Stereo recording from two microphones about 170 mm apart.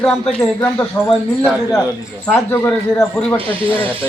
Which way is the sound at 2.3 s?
15° left (ahead or behind).